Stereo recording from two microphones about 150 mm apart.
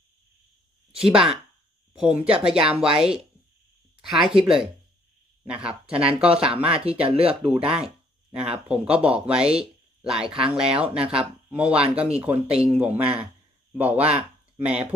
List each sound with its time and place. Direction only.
1.0 s speech: 5° right (ahead or behind)
7.1 s speech: 40° right (ahead or behind)
7.6 s speech: 5° right (ahead or behind)